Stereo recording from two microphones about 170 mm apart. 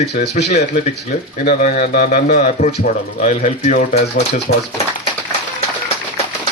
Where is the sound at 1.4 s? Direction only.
65° left (ahead or behind).